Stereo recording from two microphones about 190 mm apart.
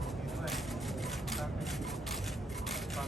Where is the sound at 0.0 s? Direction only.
Centre (ahead or behind).